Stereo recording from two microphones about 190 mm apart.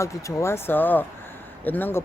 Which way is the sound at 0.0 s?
15° left (ahead or behind).